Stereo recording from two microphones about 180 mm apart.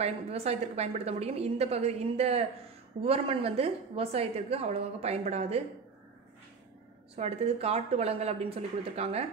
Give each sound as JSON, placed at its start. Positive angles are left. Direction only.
{"t": 0.0, "sound": "a woman's voice", "side_deg": -35}
{"t": 7.2, "sound": "a woman's voice", "side_deg": -35}